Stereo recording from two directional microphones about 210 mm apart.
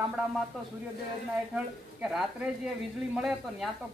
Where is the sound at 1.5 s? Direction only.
5° right (ahead or behind).